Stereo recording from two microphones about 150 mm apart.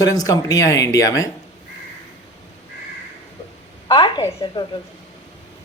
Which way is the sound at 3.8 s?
35° left (ahead or behind).